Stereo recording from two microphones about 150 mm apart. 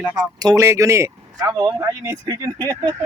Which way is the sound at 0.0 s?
25° right (ahead or behind).